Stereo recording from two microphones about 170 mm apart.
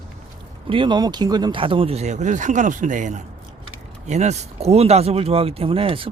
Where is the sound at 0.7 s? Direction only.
30° right (ahead or behind).